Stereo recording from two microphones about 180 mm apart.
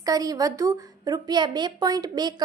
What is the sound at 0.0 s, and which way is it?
A woman's voice, 20° right (ahead or behind).